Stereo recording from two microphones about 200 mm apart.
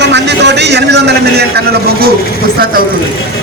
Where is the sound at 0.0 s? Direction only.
60° right (ahead or behind).